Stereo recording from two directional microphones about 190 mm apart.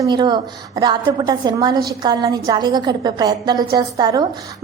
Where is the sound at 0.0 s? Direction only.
20° right (ahead or behind).